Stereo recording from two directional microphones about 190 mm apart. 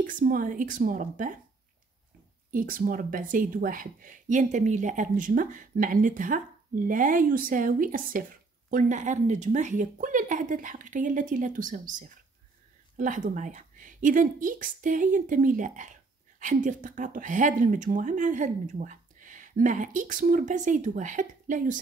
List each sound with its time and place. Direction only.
0.0 s speech: 45° right (ahead or behind)
2.5 s speech: 50° right (ahead or behind)